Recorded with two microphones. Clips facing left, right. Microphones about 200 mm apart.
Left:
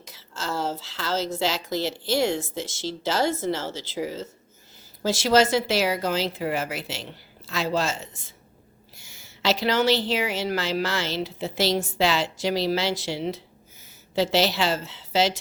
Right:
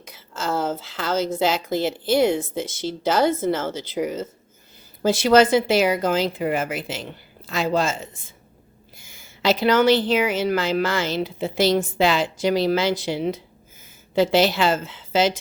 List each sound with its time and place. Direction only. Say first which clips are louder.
0.3 s speech: right 4 dB; 55° right (ahead or behind)